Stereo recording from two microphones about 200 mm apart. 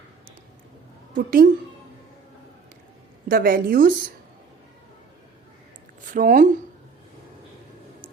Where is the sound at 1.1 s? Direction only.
45° right (ahead or behind).